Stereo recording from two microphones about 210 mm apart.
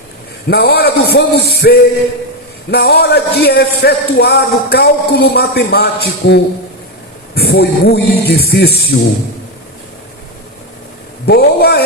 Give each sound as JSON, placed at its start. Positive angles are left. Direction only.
{"t": 0.4, "sound": "a man's voice", "side_deg": 50}
{"t": 11.3, "sound": "a man's voice", "side_deg": 50}